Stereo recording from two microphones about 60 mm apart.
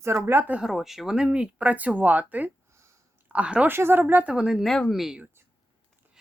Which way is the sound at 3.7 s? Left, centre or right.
Right.